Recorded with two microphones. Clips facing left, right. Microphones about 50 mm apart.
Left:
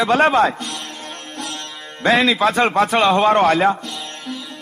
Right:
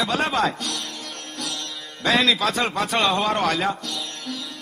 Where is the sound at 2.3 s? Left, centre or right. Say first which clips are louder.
Left 7 dB; left.